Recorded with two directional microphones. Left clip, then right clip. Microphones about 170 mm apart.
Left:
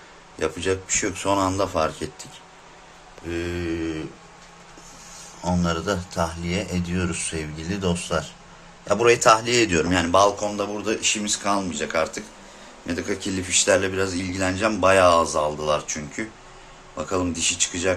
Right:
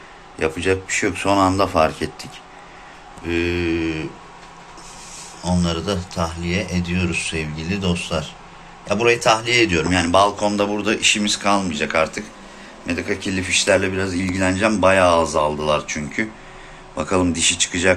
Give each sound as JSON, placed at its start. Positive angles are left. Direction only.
{"t": 0.3, "sound": "speech", "side_deg": 15}
{"t": 3.2, "sound": "speech", "side_deg": 10}
{"t": 5.4, "sound": "speech", "side_deg": 35}
{"t": 10.1, "sound": "speech", "side_deg": 15}
{"t": 12.9, "sound": "speech", "side_deg": 25}
{"t": 17.0, "sound": "speech", "side_deg": 0}